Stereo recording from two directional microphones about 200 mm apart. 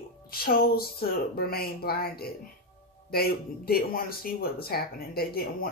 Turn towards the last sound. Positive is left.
turn(degrees=50)  # may be behind; listen again after turning